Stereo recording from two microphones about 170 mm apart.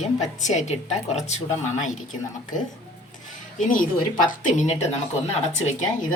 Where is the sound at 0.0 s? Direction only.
40° left (ahead or behind).